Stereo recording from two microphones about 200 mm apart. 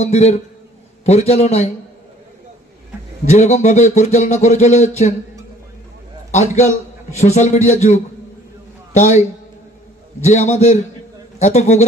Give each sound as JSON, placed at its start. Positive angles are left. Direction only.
{"t": 0.0, "sound": "speech", "side_deg": 30}
{"t": 3.3, "sound": "speech", "side_deg": 35}
{"t": 6.3, "sound": "a man's voice", "side_deg": 35}
{"t": 10.2, "sound": "a man's voice", "side_deg": 35}